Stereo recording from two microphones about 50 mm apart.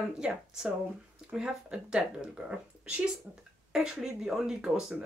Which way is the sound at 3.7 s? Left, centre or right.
Centre.